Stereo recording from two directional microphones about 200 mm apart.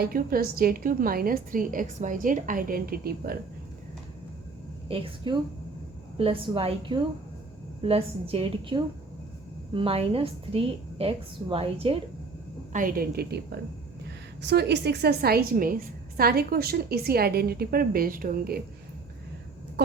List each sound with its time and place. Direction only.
0.0 s a woman's voice: 45° right (ahead or behind)
4.9 s a woman's voice: 25° right (ahead or behind)
12.7 s a woman's voice: 45° right (ahead or behind)
14.4 s a woman's voice: 55° right (ahead or behind)